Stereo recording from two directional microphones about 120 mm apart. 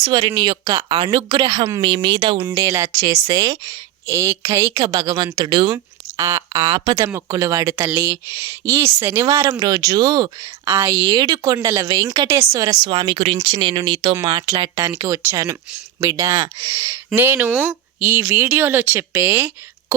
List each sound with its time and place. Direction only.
0.0 s a woman's voice: 40° right (ahead or behind)
0.9 s speech: 45° right (ahead or behind)
2.5 s a woman's voice: 25° right (ahead or behind)
5.7 s speech: 25° right (ahead or behind)
7.9 s speech: 20° right (ahead or behind); by 10.5 s 35° right (ahead or behind)
10.7 s speech: 20° right (ahead or behind)
11.1 s a woman's voice: 35° right (ahead or behind)
11.5 s speech: 25° right (ahead or behind)
12.3 s speech: 20° right (ahead or behind)
12.6 s a woman's voice: 40° right (ahead or behind); by 19.5 s 15° right (ahead or behind)